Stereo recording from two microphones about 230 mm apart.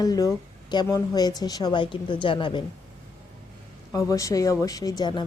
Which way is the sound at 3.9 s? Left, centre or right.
Centre.